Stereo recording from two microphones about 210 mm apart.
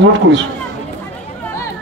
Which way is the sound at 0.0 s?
60° right (ahead or behind).